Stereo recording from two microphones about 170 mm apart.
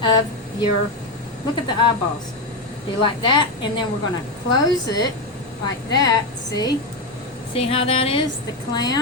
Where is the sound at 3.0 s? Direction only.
25° left (ahead or behind).